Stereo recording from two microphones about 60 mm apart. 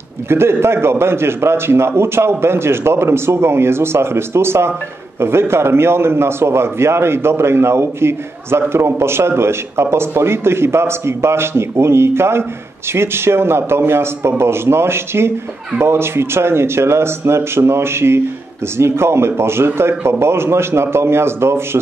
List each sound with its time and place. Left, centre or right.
0.3 s a man's voice: right